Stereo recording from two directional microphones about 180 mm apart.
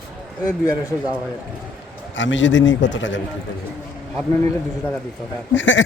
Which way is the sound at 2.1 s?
90° left.